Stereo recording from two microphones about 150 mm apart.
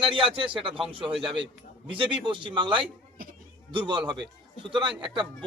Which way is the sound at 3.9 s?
30° right (ahead or behind).